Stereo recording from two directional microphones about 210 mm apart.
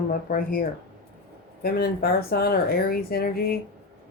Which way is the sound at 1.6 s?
45° left (ahead or behind).